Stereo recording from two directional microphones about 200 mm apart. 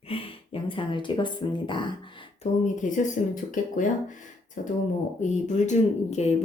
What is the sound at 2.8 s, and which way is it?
Speech, 40° left (ahead or behind).